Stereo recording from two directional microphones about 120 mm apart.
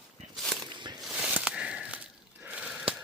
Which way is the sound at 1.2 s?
10° right (ahead or behind).